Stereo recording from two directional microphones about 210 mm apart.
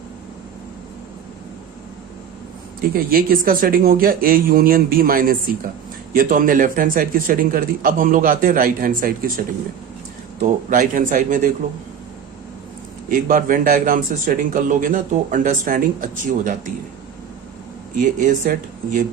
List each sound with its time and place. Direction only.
2.8 s a man's voice: 45° right (ahead or behind)
10.4 s a man's voice: 40° right (ahead or behind)
13.1 s a man's voice: 40° right (ahead or behind)
17.9 s a man's voice: 35° right (ahead or behind)